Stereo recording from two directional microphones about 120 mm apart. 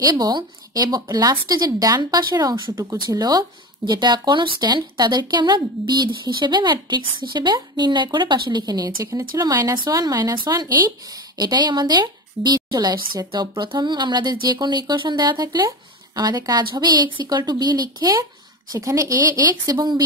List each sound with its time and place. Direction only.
0.0 s a woman's voice: 35° right (ahead or behind)